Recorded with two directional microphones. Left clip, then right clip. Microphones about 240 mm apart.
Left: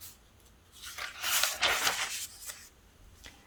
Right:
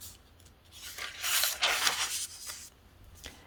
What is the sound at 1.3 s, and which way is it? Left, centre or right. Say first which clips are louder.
Rub: even; centre.